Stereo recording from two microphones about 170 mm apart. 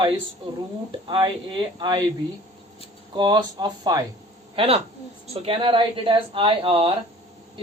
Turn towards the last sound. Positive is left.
turn(degrees=-35)  # may be behind; listen again after turning